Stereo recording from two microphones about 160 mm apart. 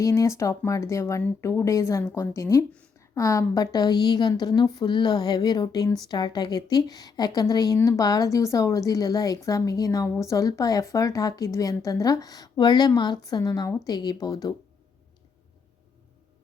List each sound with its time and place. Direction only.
0.0 s a woman's voice: 20° left (ahead or behind)